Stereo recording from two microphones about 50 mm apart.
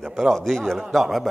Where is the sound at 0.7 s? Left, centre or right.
Centre.